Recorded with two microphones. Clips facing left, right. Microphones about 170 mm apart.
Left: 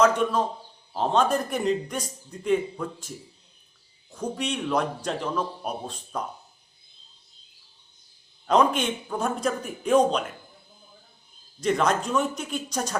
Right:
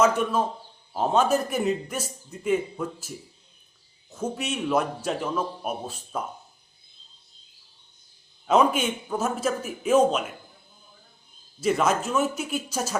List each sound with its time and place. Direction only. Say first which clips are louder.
0.0 s a man's voice: left 1 dB; 5° right (ahead or behind)
8.4 s a man's voice: right 1 dB; 5° right (ahead or behind)
11.6 s a man's voice: even; 5° right (ahead or behind)